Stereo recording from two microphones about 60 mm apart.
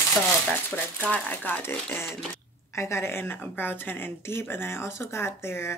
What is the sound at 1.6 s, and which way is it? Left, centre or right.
Speech, left.